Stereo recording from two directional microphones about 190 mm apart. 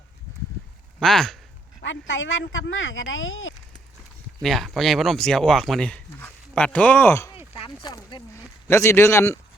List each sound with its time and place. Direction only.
0.9 s speech: centre (ahead or behind)
1.8 s speech: 75° left (ahead or behind)
4.4 s speech: centre (ahead or behind)
7.5 s speech: 25° left (ahead or behind)